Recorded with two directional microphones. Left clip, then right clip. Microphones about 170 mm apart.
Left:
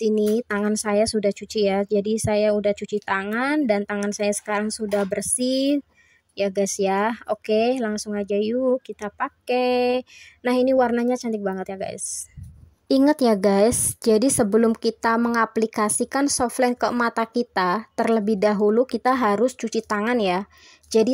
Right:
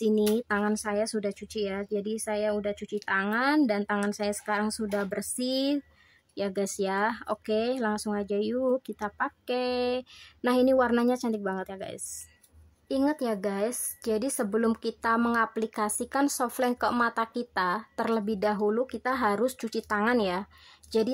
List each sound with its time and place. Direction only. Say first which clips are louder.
0.0 s a woman's voice: left 5 dB; 20° left (ahead or behind)
12.8 s a woman's voice: left 10 dB; 40° left (ahead or behind)